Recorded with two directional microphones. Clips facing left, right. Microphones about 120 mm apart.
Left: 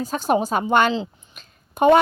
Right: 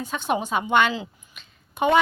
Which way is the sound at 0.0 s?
40° left (ahead or behind).